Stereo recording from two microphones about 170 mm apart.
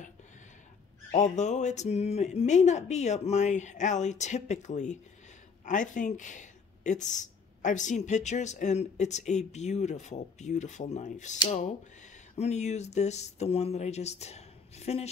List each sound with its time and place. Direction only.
1.1 s speech: 45° left (ahead or behind)